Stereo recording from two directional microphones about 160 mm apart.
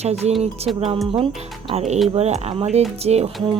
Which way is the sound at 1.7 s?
40° right (ahead or behind).